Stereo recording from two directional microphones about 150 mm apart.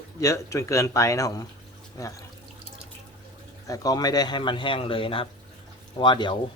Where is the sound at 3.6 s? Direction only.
25° left (ahead or behind).